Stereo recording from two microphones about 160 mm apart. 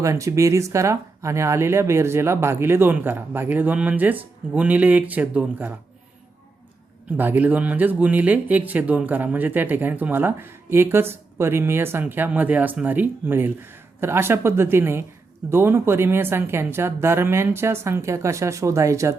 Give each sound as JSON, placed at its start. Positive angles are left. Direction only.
{"t": 0.0, "sound": "speech", "side_deg": -20}
{"t": 7.2, "sound": "speech", "side_deg": -10}